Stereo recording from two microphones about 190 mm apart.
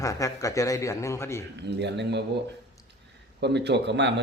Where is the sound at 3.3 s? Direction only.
60° right (ahead or behind).